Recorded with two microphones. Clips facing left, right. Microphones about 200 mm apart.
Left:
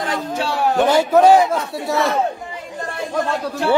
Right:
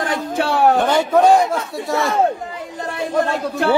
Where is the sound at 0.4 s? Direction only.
55° right (ahead or behind).